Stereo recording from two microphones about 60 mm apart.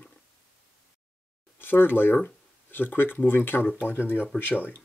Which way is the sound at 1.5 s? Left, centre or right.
Left.